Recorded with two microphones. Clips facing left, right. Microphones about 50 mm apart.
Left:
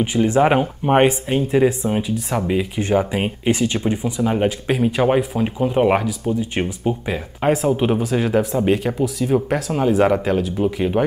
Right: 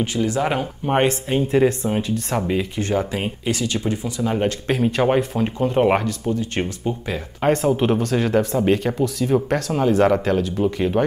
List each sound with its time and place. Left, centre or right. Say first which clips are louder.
0.0 s speech: left 5 dB; left
1.3 s speech: left 1 dB; centre
2.8 s speech: left 3 dB; centre
6.5 s speech: left 2 dB; centre
7.5 s speech: even; centre